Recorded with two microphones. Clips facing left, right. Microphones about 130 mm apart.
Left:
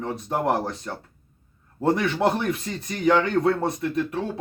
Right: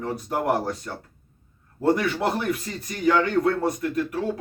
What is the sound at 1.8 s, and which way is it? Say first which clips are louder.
Speech: left 1 dB; 25° left (ahead or behind).